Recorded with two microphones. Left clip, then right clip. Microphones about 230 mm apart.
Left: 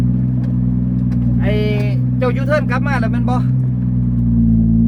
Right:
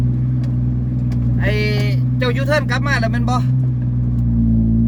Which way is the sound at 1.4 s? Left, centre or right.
Centre.